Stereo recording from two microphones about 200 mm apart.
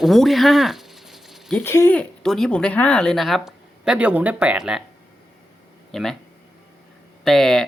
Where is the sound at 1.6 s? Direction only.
10° left (ahead or behind); by 4.8 s 5° right (ahead or behind).